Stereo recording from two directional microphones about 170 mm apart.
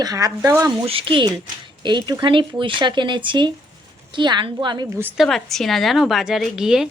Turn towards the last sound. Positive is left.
turn(degrees=-5)  # may be behind; listen again after turning